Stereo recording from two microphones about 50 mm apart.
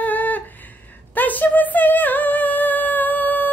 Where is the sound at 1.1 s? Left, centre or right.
Left.